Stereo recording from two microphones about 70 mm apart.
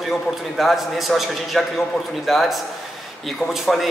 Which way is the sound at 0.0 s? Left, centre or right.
Centre.